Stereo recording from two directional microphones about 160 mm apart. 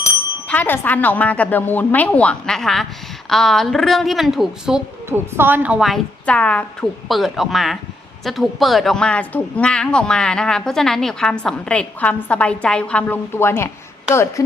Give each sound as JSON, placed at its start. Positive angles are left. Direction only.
{"t": 0.4, "sound": "a woman's voice", "side_deg": 10}
{"t": 5.0, "sound": "a woman's voice", "side_deg": -15}